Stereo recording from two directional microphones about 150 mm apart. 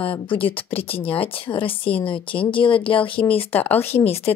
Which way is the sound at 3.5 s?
10° left (ahead or behind).